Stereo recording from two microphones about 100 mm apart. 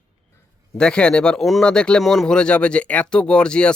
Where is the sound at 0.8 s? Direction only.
10° left (ahead or behind).